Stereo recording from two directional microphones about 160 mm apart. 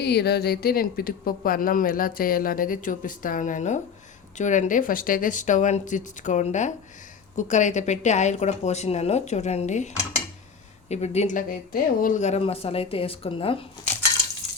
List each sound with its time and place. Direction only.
0.0 s speech: 90° left; by 13.7 s 35° left (ahead or behind)